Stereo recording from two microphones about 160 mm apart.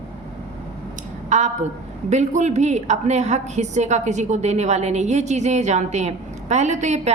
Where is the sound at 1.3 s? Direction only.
45° right (ahead or behind).